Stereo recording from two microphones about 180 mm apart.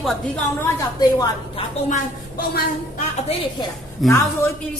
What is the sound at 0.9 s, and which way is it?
Speech, 20° left (ahead or behind).